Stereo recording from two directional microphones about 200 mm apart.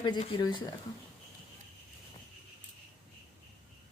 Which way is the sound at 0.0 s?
25° left (ahead or behind).